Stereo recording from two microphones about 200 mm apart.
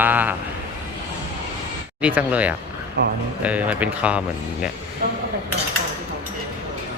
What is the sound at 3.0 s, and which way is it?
Speech, 60° right (ahead or behind).